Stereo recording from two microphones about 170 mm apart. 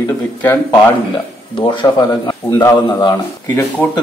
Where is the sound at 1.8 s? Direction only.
25° left (ahead or behind).